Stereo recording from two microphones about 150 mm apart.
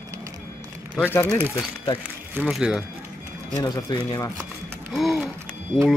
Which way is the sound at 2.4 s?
5° right (ahead or behind).